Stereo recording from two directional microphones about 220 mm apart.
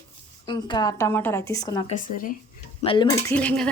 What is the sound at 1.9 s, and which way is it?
Speech, 40° left (ahead or behind).